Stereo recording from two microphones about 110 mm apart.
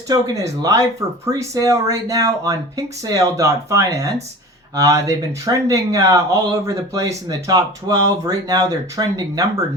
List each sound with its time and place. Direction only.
0.1 s speech: 30° right (ahead or behind)